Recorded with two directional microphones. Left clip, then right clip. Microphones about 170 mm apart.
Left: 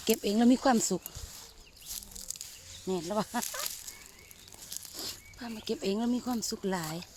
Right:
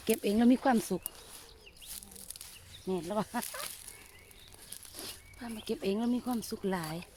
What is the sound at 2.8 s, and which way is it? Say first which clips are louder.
Speech: left 2 dB; 25° left (ahead or behind).